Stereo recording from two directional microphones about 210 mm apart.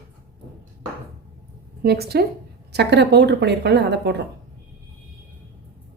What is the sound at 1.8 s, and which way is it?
A woman's voice, 50° right (ahead or behind).